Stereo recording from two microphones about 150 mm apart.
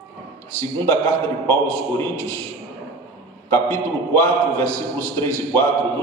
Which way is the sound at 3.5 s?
15° left (ahead or behind).